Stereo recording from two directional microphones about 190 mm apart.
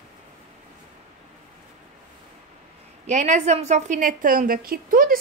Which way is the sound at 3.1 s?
40° right (ahead or behind).